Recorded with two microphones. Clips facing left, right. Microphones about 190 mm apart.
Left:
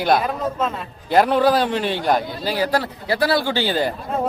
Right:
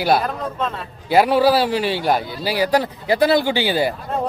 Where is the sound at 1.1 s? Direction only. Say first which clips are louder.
Right 1 dB; 5° right (ahead or behind).